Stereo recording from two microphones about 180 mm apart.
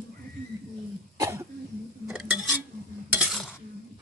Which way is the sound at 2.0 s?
5° right (ahead or behind).